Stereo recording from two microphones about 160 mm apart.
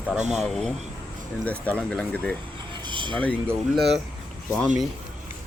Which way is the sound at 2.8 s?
30° right (ahead or behind).